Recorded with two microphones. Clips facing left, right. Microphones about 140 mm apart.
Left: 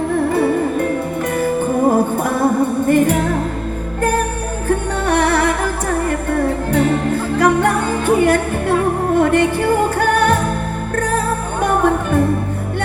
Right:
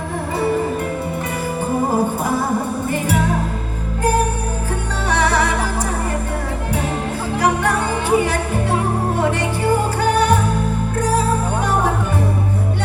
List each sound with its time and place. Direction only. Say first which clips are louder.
2.8 s music: left 9 dB; 55° left (ahead or behind)
5.0 s music: left 3 dB; 55° left (ahead or behind)
7.3 s music: left 3 dB; 55° left (ahead or behind)
10.0 s music: left 1 dB; 55° left (ahead or behind)